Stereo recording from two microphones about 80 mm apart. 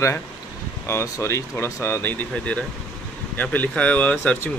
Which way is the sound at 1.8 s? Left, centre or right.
Left.